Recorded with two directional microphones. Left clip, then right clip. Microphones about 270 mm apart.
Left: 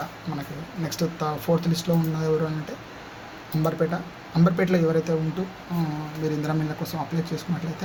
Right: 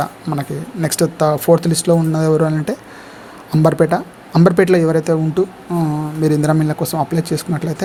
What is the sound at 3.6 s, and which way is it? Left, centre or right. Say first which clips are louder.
Speech: right 12 dB; right.